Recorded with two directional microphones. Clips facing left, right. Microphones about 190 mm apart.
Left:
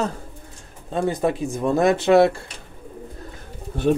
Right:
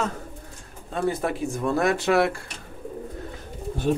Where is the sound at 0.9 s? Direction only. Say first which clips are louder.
Left 4 dB; 20° left (ahead or behind).